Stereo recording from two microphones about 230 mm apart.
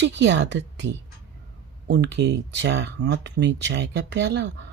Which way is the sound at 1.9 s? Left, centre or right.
Right.